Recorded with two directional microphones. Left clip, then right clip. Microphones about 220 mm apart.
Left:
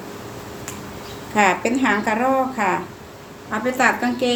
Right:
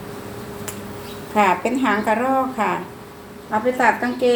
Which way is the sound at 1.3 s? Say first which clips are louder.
Even; 15° left (ahead or behind).